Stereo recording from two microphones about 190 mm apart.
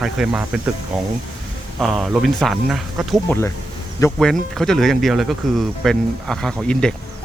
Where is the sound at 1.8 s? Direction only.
Centre (ahead or behind).